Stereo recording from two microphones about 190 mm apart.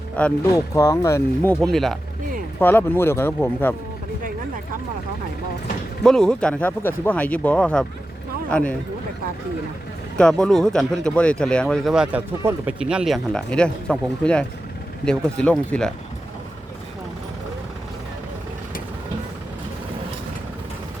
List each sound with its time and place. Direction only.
0.2 s speech: 5° left (ahead or behind)
1.6 s speech: centre (ahead or behind)
6.0 s speech: 5° left (ahead or behind)
10.2 s speech: 5° left (ahead or behind)